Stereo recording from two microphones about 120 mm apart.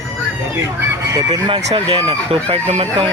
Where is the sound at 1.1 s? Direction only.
35° right (ahead or behind).